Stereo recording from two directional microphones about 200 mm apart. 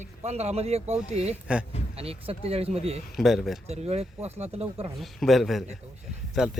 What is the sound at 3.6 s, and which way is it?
Speech, 30° right (ahead or behind).